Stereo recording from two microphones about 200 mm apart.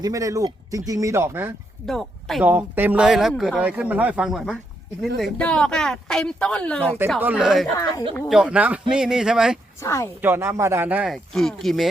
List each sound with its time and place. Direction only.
0.0 s speech: 15° right (ahead or behind)
1.9 s speech: centre (ahead or behind)
7.2 s speech: 5° right (ahead or behind)
9.8 s a woman's voice: 15° left (ahead or behind)
10.2 s speech: 10° right (ahead or behind)